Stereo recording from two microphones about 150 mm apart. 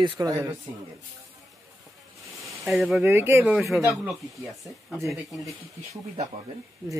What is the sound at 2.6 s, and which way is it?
Speech, centre (ahead or behind).